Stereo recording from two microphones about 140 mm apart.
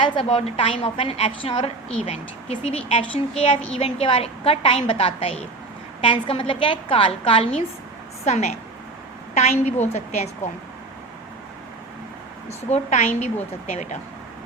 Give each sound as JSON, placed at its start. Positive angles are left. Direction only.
{"t": 0.0, "sound": "a woman's voice", "side_deg": 40}
{"t": 8.2, "sound": "a woman's voice", "side_deg": 55}
{"t": 12.5, "sound": "a woman's voice", "side_deg": 55}